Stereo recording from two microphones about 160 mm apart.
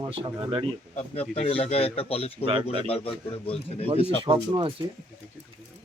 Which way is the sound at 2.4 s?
35° right (ahead or behind).